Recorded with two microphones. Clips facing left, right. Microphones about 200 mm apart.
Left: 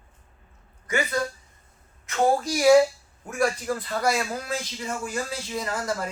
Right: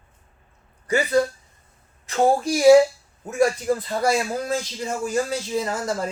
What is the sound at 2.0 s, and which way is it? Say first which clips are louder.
A woman's voice: right 3 dB; 30° right (ahead or behind).